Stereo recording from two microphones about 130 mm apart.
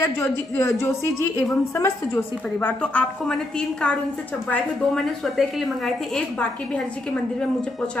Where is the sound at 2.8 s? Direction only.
10° left (ahead or behind).